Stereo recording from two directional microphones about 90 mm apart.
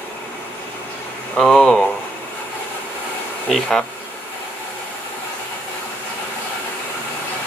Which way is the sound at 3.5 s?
5° left (ahead or behind).